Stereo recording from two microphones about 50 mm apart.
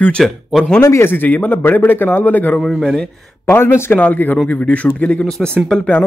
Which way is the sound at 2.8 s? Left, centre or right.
Centre.